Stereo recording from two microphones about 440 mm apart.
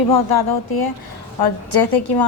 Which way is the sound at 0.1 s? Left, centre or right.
Left.